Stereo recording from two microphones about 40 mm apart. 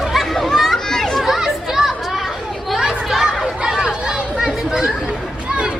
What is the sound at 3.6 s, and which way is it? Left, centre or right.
Chatter, centre.